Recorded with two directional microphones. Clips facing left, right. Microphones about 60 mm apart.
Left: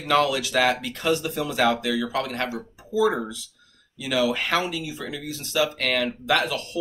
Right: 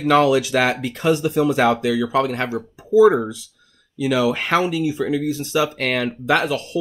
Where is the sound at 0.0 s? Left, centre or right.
Right.